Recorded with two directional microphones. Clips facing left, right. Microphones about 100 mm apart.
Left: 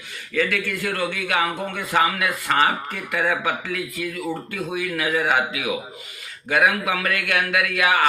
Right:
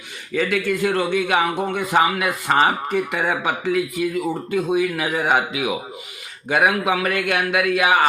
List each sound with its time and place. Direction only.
0.3 s speech: 20° right (ahead or behind)